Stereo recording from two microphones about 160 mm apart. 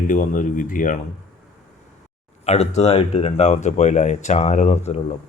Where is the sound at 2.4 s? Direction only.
40° left (ahead or behind).